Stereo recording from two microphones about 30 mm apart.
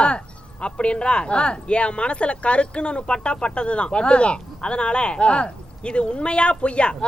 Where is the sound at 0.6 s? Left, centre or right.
Left.